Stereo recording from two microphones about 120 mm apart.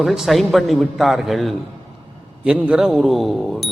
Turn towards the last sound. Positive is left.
turn(degrees=0)  # may be behind; listen again after turning